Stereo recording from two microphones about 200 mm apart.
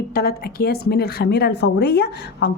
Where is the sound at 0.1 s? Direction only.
50° left (ahead or behind).